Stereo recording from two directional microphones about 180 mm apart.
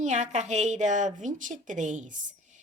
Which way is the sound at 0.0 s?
40° right (ahead or behind).